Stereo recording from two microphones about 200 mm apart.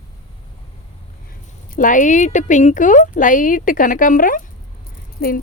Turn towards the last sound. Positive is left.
turn(degrees=45)  # may be behind; listen again after turning